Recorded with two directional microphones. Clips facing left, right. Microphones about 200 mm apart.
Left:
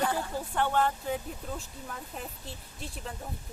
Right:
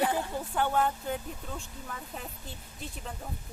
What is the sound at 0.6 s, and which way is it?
Speech, centre (ahead or behind).